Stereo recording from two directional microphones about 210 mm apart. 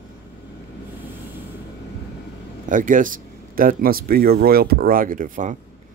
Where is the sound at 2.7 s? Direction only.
40° right (ahead or behind).